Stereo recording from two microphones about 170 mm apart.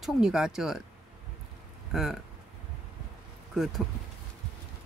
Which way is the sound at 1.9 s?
Centre (ahead or behind).